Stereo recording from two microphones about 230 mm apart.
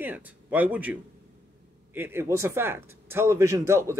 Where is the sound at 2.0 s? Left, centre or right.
Centre.